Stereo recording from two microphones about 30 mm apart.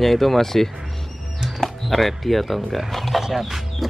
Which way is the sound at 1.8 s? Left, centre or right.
Centre.